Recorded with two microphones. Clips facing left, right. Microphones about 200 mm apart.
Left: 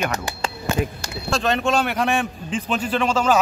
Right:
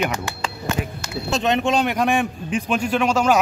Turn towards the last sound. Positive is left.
turn(degrees=-10)  # may be behind; listen again after turning